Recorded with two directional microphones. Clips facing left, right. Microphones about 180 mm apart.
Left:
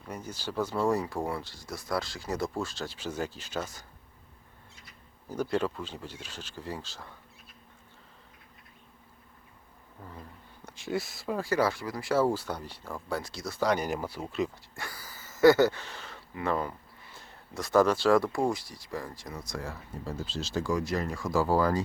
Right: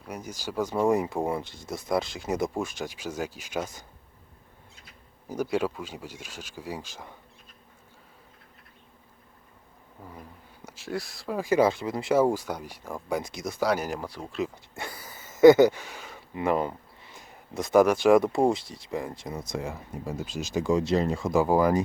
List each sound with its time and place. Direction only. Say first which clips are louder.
0.0 s speech: right 2 dB; 10° right (ahead or behind)
5.3 s speech: right 2 dB; 10° right (ahead or behind)
10.0 s speech: right 1 dB; 10° right (ahead or behind)
10.7 s speech: left 1 dB; centre (ahead or behind)
11.3 s speech: right 6 dB; 20° right (ahead or behind); by 14.5 s centre (ahead or behind)
14.8 s a sound: right 4 dB; 20° right (ahead or behind)
16.3 s speech: right 5 dB; 20° right (ahead or behind)